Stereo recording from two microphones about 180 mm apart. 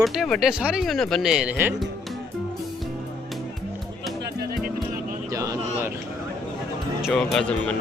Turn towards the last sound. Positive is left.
turn(degrees=5)  # may be behind; listen again after turning